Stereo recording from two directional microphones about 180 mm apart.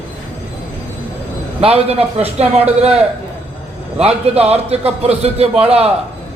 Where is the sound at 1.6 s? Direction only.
35° right (ahead or behind).